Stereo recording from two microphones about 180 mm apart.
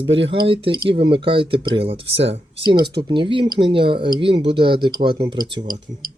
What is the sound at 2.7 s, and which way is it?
Speech, 65° right (ahead or behind).